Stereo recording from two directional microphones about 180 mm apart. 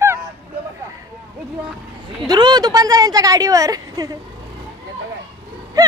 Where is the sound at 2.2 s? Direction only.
25° right (ahead or behind).